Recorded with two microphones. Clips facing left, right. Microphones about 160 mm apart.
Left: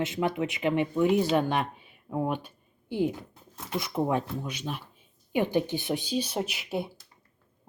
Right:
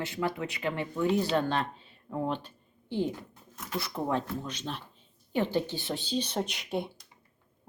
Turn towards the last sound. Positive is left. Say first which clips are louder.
# left 1 dB
turn(degrees=5)  # may be behind; listen again after turning